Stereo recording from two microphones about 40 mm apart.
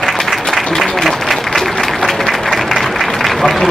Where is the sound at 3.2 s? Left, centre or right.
Centre.